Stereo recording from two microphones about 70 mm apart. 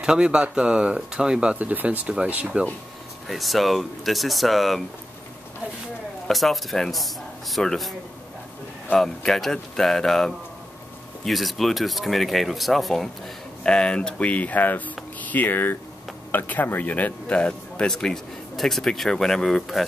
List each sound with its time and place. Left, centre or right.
0.0 s speech: centre
3.3 s speech: centre
6.2 s speech: centre
8.9 s speech: centre
13.7 s speech: centre